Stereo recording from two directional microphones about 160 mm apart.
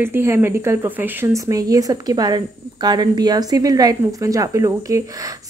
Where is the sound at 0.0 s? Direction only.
15° right (ahead or behind).